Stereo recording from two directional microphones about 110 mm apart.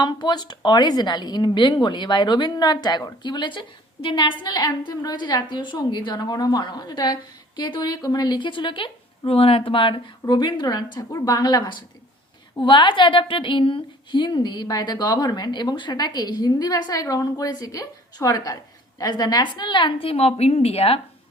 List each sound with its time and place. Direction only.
0.0 s a woman's voice: 40° left (ahead or behind); by 21.0 s 65° left (ahead or behind)